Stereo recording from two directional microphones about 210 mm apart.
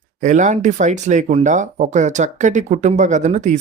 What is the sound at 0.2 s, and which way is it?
Speech, 35° right (ahead or behind).